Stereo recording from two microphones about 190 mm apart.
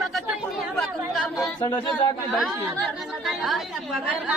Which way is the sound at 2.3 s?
Centre (ahead or behind).